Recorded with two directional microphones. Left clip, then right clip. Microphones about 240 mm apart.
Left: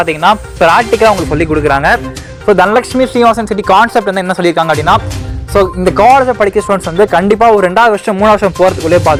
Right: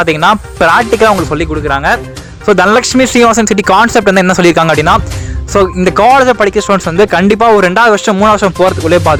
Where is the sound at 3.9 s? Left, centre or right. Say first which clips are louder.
Right 4 dB; right.